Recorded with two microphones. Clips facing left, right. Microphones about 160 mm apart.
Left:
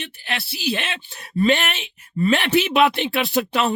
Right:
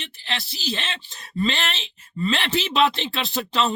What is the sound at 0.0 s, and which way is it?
Speech, 60° left (ahead or behind).